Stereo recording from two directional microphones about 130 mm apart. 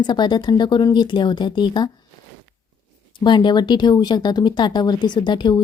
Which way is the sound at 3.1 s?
35° left (ahead or behind).